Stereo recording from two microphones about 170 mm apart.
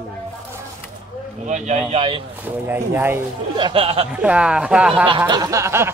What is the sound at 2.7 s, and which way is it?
Speech, 10° right (ahead or behind).